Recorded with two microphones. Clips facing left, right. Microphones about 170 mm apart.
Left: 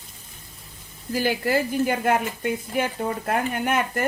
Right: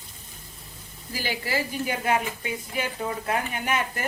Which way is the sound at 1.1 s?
50° left (ahead or behind).